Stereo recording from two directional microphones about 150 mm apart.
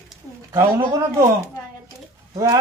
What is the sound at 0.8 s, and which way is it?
Speech, 20° right (ahead or behind).